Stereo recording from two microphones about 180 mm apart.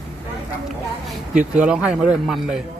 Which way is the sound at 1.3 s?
5° right (ahead or behind).